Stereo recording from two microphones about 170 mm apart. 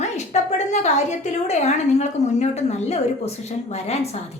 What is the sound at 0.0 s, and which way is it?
A woman's voice, 40° left (ahead or behind).